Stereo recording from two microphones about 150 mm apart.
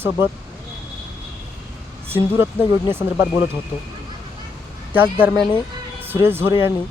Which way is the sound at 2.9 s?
15° right (ahead or behind).